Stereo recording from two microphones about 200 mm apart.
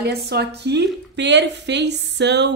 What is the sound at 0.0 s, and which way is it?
A woman's voice, 55° right (ahead or behind).